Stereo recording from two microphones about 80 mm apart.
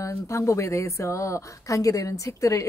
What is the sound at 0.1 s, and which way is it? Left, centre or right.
Speech, left.